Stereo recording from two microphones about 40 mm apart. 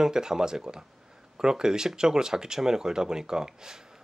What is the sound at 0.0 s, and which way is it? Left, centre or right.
Speech, centre.